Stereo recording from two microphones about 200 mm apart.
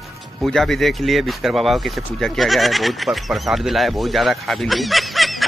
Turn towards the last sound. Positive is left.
turn(degrees=0)  # may be behind; listen again after turning